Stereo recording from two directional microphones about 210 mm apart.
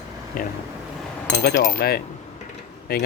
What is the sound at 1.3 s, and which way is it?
Speech, 50° left (ahead or behind).